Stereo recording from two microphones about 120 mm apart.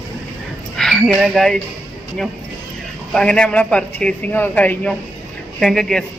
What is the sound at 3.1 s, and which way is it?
A man's voice, 5° left (ahead or behind).